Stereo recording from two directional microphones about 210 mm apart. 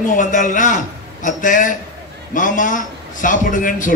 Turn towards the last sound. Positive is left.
turn(degrees=40)  # may be behind; listen again after turning